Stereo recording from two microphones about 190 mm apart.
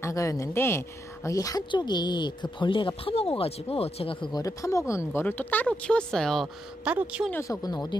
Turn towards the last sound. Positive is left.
turn(degrees=20)  # may be behind; listen again after turning